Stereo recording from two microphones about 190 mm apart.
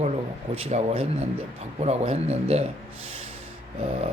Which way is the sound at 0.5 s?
35° right (ahead or behind).